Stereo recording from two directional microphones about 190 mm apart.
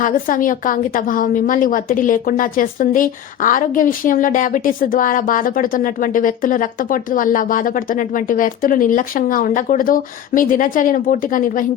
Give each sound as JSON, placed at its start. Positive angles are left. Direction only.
{"t": 0.0, "sound": "a woman's voice", "side_deg": 45}